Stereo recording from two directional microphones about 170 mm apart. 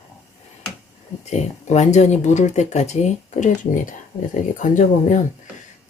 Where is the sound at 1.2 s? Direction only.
40° left (ahead or behind).